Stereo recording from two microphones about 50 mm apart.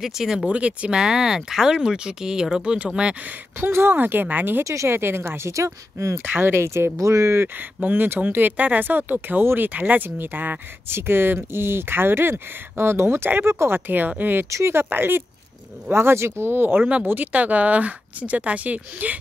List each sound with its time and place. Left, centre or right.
0.0 s speech: centre
0.5 s speech: right
3.6 s speech: right
4.8 s speech: right
5.5 s speech: right
6.2 s speech: right
7.8 s speech: right
9.8 s speech: right
10.0 s speech: right
10.9 s speech: right
13.7 s speech: right